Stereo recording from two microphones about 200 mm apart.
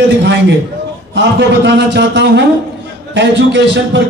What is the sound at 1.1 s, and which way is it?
A man's voice, 60° right (ahead or behind).